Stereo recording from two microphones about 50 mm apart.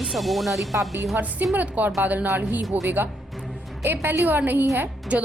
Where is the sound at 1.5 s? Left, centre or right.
Right.